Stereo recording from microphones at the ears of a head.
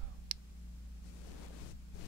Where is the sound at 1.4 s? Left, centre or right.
Left.